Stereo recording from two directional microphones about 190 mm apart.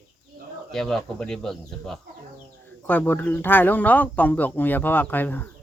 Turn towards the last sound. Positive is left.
turn(degrees=10)  # may be behind; listen again after turning